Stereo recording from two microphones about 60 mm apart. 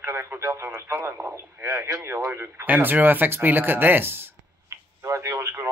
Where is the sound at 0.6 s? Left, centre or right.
Right.